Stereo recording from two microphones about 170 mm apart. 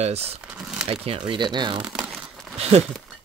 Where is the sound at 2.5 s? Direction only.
40° right (ahead or behind).